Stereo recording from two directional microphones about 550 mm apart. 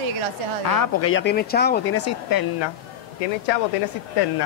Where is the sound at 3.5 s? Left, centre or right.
Left.